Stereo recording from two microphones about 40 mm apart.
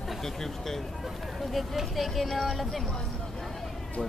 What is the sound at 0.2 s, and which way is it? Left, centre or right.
Speech, centre.